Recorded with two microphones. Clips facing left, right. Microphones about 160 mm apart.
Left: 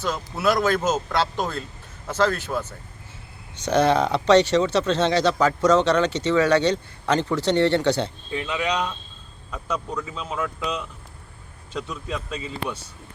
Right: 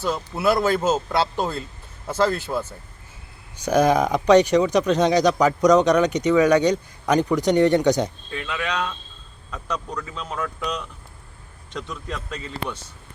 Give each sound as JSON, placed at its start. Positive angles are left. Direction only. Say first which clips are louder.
{"t": 0.4, "sound": "speech", "louder": "right 1 dB", "side_deg": -10}
{"t": 8.3, "sound": "speech", "louder": "left 2 dB", "side_deg": 20}